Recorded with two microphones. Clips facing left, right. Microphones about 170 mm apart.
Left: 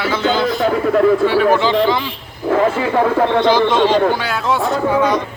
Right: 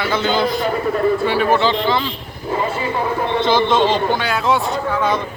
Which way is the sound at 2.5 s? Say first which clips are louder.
Left 6 dB; 90° left.